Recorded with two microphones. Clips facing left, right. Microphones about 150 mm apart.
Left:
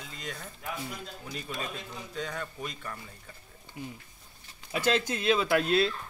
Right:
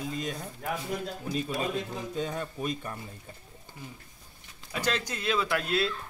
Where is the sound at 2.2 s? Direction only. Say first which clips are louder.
Right 5 dB; 25° right (ahead or behind).